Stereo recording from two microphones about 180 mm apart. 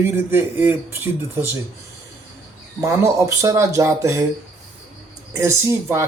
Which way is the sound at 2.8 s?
15° right (ahead or behind).